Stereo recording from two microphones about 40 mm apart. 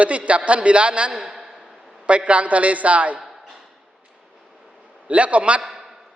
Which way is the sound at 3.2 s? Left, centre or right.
Centre.